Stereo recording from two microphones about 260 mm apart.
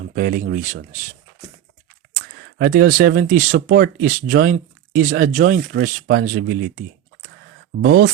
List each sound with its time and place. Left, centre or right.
0.1 s speech: right
2.6 s speech: right